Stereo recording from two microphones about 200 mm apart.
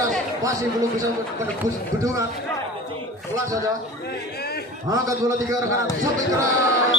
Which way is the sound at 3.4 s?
15° right (ahead or behind).